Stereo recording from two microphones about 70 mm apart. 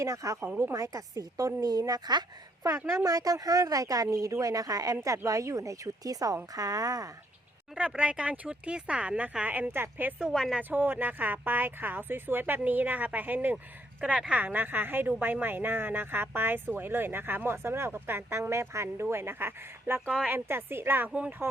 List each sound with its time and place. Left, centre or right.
0.0 s speech: right
2.1 s a woman's voice: right
2.9 s speech: right
7.8 s speech: centre
10.3 s a woman's voice: centre
10.6 s a woman's voice: right